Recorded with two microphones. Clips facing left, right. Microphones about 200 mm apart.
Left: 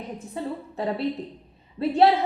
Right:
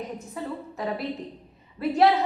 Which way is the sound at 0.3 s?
30° left (ahead or behind).